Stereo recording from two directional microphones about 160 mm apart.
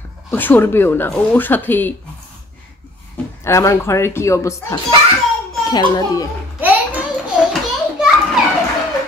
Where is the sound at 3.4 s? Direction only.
15° left (ahead or behind).